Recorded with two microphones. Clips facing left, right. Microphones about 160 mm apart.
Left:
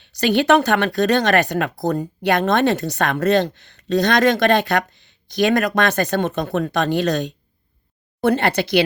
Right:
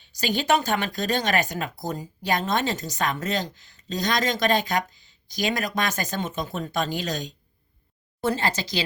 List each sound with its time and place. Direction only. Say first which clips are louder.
0.0 s speech: left 9 dB; 70° left (ahead or behind)